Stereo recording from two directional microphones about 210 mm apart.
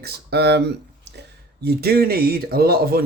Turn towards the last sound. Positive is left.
turn(degrees=-45)  # may be behind; listen again after turning